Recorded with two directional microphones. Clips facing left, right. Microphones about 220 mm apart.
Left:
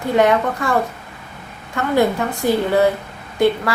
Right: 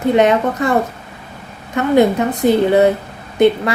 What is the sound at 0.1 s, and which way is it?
A woman's voice, 20° right (ahead or behind).